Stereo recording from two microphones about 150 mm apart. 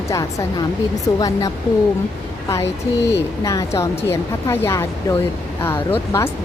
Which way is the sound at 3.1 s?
20° left (ahead or behind).